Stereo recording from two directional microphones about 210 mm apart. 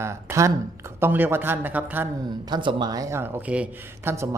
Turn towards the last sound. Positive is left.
turn(degrees=-15)  # may be behind; listen again after turning